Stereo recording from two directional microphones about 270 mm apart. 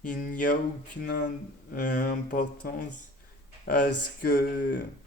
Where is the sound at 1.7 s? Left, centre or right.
Left.